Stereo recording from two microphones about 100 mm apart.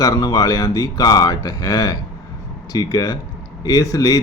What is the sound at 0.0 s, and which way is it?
Speech, 35° left (ahead or behind).